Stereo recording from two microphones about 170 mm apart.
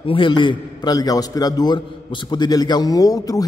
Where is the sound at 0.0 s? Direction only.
30° left (ahead or behind).